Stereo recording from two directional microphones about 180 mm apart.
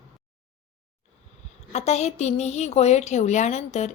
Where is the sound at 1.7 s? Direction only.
35° left (ahead or behind).